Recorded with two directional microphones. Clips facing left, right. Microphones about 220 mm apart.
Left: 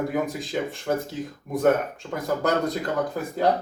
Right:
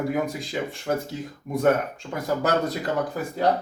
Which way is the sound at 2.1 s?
5° right (ahead or behind).